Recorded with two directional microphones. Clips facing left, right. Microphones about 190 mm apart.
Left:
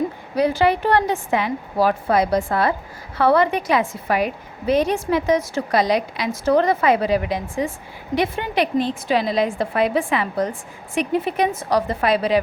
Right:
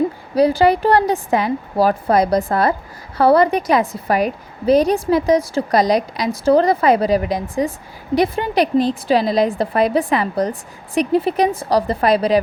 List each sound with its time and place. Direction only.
0.3 s a woman's voice: 35° right (ahead or behind)